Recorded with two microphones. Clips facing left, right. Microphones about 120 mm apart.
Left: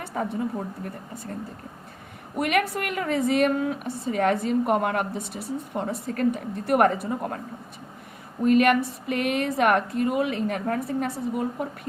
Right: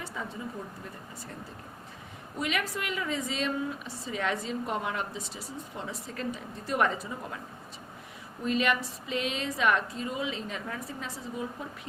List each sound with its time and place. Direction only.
0.0 s a woman's voice: 55° left (ahead or behind)
2.3 s a woman's voice: 60° left (ahead or behind)
8.4 s a woman's voice: 55° left (ahead or behind)